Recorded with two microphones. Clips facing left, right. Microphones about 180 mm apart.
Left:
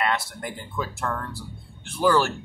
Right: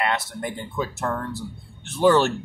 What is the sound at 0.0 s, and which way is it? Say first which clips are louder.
Speech: right 1 dB; 25° right (ahead or behind).